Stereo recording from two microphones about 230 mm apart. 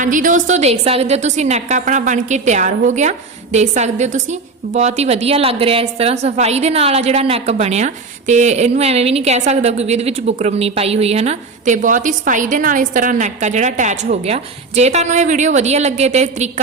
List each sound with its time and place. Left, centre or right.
0.0 s a woman's voice: right